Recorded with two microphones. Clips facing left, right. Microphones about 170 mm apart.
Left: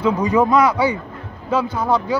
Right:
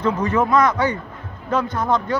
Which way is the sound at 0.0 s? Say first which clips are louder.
Left 3 dB; 15° left (ahead or behind).